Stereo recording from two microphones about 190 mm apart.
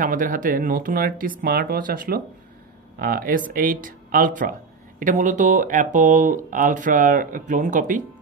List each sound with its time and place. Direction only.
0.0 s speech: 45° right (ahead or behind)